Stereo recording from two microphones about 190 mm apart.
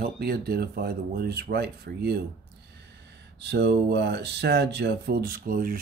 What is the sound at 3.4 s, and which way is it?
Speech, 65° right (ahead or behind).